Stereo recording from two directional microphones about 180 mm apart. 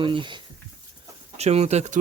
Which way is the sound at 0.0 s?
25° right (ahead or behind).